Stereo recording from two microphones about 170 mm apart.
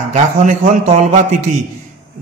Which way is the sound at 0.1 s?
45° right (ahead or behind).